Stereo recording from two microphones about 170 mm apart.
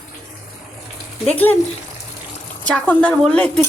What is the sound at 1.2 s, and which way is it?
Speech, 10° left (ahead or behind).